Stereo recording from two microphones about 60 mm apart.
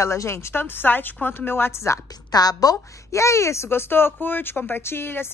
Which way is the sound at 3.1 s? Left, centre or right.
Left.